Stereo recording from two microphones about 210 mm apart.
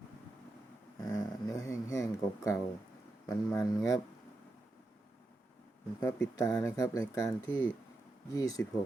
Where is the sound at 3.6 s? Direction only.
20° left (ahead or behind).